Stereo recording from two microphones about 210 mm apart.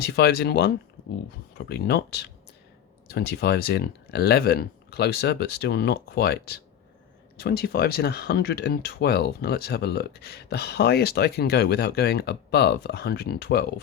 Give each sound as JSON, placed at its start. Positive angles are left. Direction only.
{"t": 0.0, "sound": "speech", "side_deg": 50}